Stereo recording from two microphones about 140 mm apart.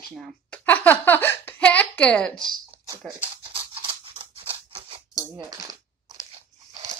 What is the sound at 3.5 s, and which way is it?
Scissors, 40° right (ahead or behind).